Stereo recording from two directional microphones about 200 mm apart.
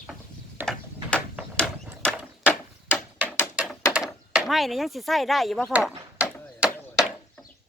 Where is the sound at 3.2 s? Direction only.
5° left (ahead or behind).